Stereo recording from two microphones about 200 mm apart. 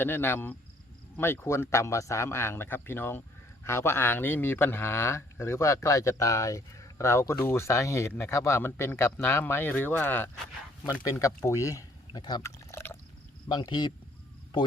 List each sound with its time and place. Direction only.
0.0 s a man's voice: 10° left (ahead or behind)
13.5 s speech: 20° left (ahead or behind)